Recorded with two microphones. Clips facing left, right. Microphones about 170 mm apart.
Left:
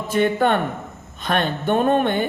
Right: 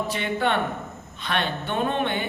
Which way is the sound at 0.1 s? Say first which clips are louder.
Left 11 dB; 45° left (ahead or behind).